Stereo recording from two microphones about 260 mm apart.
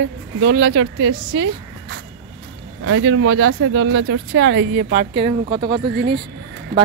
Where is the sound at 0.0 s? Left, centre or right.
Right.